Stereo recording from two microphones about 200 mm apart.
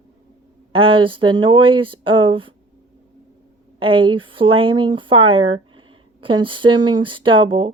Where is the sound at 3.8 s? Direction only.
25° right (ahead or behind).